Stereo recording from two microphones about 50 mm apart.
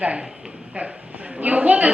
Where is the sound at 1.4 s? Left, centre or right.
Right.